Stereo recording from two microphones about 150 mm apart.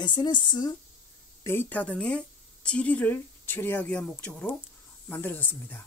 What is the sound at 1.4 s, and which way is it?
Speech, 15° left (ahead or behind).